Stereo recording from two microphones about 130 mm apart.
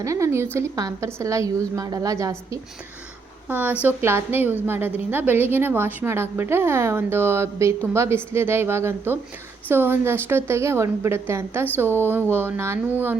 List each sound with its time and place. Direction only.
0.0 s a woman's voice: 25° right (ahead or behind)
3.5 s a woman's voice: 15° right (ahead or behind)